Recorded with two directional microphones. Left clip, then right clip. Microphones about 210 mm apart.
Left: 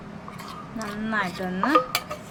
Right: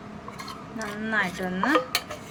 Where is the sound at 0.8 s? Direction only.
Centre (ahead or behind).